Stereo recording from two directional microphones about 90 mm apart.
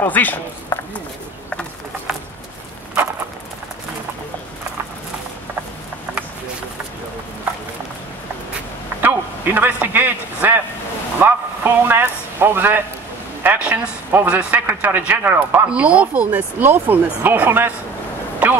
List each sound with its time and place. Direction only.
0.0 s speech: 20° left (ahead or behind)
9.0 s a man's voice: 20° right (ahead or behind)
18.4 s a sound: 15° right (ahead or behind)